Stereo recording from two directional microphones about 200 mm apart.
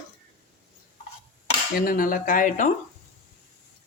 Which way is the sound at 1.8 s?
45° left (ahead or behind).